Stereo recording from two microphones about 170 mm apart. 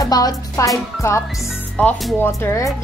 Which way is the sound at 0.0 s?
20° left (ahead or behind).